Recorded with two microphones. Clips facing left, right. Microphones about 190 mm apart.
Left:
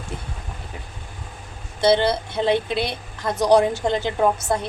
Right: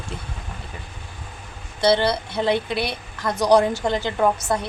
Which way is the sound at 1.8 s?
20° left (ahead or behind).